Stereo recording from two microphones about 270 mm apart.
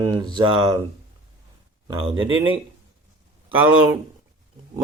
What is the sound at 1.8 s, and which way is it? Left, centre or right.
Speech, centre.